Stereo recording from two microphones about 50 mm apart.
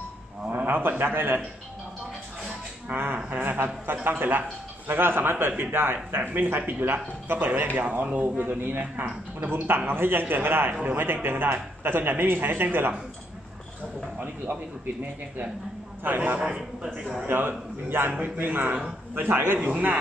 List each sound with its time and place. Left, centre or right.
0.7 s speech: right
2.9 s speech: right
10.7 s speech: right
11.5 s speech: right
14.2 s speech: right
16.0 s speech: right
16.3 s a man's voice: centre
17.3 s speech: right